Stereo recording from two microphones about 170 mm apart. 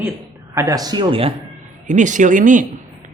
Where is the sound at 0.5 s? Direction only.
20° right (ahead or behind).